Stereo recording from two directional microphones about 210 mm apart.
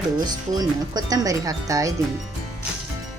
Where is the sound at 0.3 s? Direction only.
20° right (ahead or behind).